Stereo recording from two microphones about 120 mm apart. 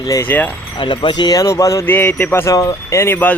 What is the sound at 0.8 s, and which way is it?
Speech, 40° left (ahead or behind).